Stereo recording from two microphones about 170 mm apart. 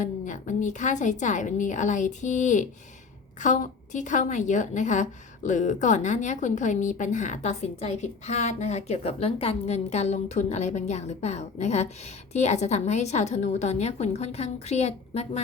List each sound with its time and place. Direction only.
0.0 s a woman's voice: 50° left (ahead or behind)